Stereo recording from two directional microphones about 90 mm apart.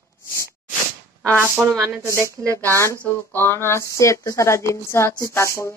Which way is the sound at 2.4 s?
15° left (ahead or behind).